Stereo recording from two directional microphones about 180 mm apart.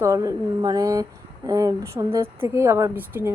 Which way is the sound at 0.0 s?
15° right (ahead or behind).